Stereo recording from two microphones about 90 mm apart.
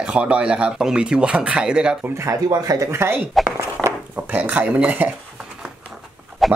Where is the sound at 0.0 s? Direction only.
10° right (ahead or behind).